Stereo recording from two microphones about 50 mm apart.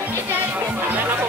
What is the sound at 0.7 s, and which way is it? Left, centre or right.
Music, right.